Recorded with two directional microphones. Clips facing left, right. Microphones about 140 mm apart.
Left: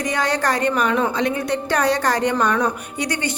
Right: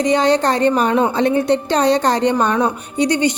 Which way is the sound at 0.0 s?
20° right (ahead or behind).